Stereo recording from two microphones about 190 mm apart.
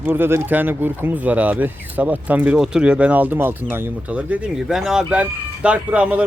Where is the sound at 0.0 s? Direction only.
10° right (ahead or behind).